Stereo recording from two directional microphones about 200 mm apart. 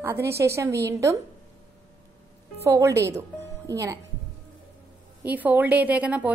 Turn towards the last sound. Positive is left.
turn(degrees=-5)  # may be behind; listen again after turning